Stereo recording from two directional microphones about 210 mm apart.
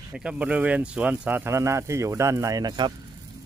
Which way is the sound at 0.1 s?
5° right (ahead or behind).